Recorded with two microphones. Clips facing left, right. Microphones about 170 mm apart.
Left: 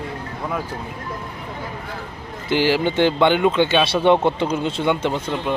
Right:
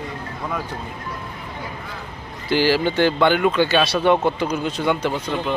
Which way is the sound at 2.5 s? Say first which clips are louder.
Even; 20° left (ahead or behind).